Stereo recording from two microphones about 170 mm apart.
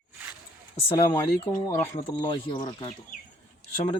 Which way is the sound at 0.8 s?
15° left (ahead or behind).